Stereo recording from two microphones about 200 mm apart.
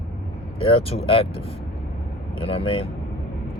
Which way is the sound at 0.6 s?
25° left (ahead or behind).